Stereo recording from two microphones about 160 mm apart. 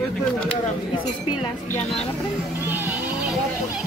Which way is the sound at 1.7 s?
5° left (ahead or behind).